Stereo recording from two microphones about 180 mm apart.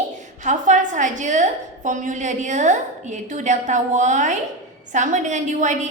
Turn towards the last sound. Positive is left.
turn(degrees=-40)  # may be behind; listen again after turning